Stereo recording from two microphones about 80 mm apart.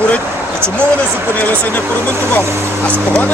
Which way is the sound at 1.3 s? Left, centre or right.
Left.